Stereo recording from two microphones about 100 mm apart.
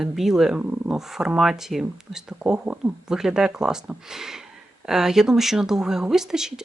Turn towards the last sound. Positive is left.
turn(degrees=-5)  # may be behind; listen again after turning